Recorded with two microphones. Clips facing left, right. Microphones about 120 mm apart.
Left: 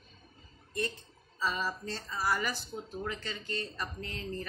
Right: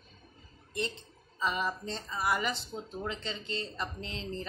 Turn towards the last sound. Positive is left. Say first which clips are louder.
# even
turn(degrees=-25)  # may be behind; listen again after turning